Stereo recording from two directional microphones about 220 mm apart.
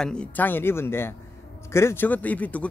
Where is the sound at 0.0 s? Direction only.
5° left (ahead or behind).